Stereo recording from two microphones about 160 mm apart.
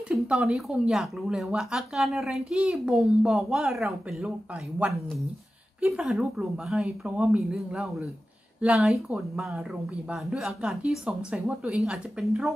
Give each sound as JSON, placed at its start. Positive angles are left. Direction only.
{"t": 0.1, "sound": "speech", "side_deg": -5}
{"t": 5.8, "sound": "speech", "side_deg": -5}